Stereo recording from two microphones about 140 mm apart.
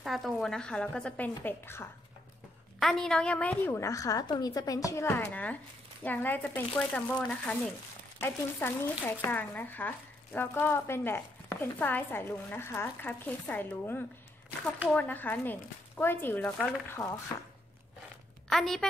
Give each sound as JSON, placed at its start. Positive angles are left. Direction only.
{"t": 0.0, "sound": "speech", "side_deg": 0}
{"t": 2.8, "sound": "speech", "side_deg": 5}
{"t": 18.5, "sound": "a woman's voice", "side_deg": 5}